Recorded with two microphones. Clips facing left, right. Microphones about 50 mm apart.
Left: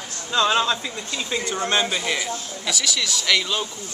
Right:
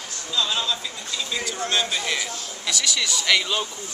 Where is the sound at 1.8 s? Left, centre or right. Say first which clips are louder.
Left 2 dB; centre.